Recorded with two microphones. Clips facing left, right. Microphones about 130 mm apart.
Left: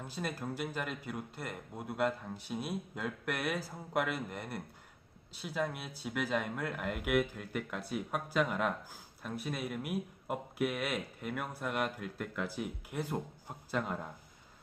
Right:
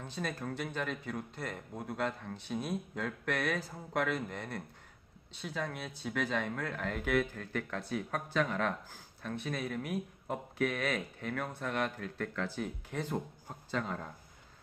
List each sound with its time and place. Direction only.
0.0 s speech: 5° left (ahead or behind)